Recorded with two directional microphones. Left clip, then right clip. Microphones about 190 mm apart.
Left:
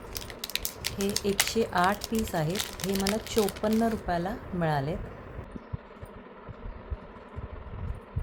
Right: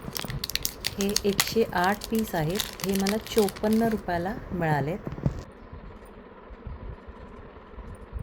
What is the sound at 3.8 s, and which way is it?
Speech, 20° right (ahead or behind).